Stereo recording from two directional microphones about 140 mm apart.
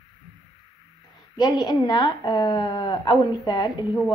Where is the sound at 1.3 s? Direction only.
30° left (ahead or behind).